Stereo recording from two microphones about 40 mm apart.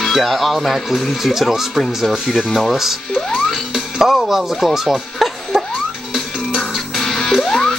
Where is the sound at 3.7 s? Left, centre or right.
Centre.